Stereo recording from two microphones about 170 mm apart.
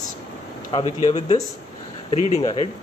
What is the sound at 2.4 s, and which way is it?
Speech, 30° left (ahead or behind).